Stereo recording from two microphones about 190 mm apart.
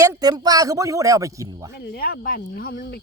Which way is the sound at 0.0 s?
20° right (ahead or behind).